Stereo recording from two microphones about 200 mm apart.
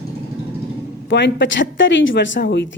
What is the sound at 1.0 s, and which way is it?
Speech, 65° left (ahead or behind).